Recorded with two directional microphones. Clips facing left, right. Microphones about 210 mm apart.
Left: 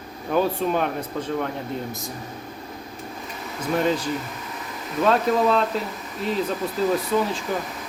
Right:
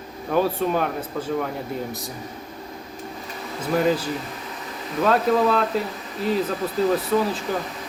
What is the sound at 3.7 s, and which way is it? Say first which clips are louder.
Speech: right 2 dB; 5° right (ahead or behind).